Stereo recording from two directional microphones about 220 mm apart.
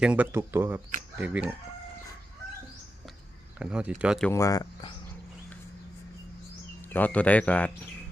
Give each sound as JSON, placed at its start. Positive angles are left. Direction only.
{"t": 0.0, "sound": "speech", "side_deg": -5}
{"t": 3.6, "sound": "speech", "side_deg": -5}
{"t": 4.3, "sound": "speech", "side_deg": 15}
{"t": 6.9, "sound": "speech", "side_deg": 5}